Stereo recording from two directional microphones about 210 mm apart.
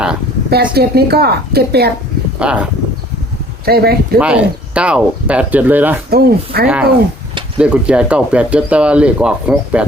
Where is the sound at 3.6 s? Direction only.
45° right (ahead or behind).